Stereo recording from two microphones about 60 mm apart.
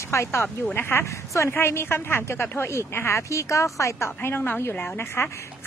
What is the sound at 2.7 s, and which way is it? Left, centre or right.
Speech, left.